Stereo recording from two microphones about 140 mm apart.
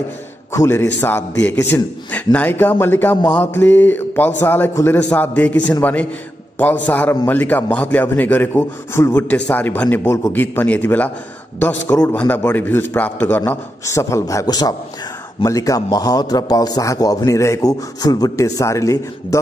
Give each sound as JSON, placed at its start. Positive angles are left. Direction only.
{"t": 0.5, "sound": "a man's voice", "side_deg": 20}